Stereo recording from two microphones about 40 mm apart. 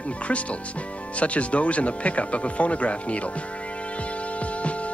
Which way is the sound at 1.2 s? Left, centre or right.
Left.